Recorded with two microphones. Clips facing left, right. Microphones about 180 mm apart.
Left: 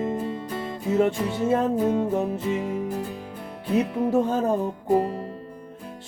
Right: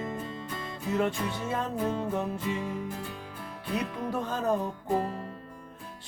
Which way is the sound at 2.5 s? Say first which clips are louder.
Left 7 dB; 45° left (ahead or behind).